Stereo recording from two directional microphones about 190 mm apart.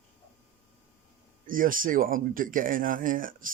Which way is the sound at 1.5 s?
45° right (ahead or behind).